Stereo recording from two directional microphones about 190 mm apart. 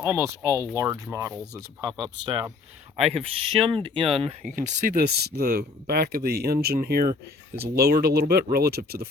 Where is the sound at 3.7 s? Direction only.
25° right (ahead or behind); by 9.1 s 55° right (ahead or behind).